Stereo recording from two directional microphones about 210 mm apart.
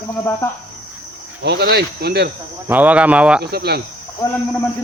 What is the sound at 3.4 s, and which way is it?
Speech, 50° right (ahead or behind).